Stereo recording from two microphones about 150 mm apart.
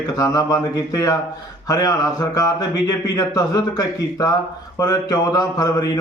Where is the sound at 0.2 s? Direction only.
20° left (ahead or behind).